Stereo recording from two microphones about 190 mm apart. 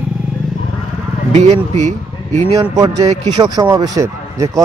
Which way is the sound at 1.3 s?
35° right (ahead or behind).